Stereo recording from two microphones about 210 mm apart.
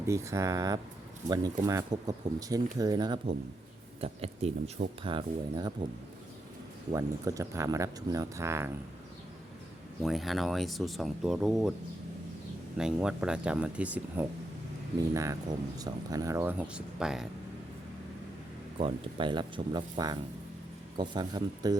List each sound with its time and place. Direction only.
0.0 s speech: 15° right (ahead or behind)
6.9 s speech: 15° right (ahead or behind)
10.0 s speech: centre (ahead or behind)
12.7 s speech: 5° right (ahead or behind)
18.8 s speech: 25° right (ahead or behind)